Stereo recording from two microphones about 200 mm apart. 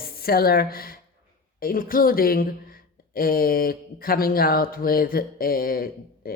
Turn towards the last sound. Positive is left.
turn(degrees=45)  # may be behind; listen again after turning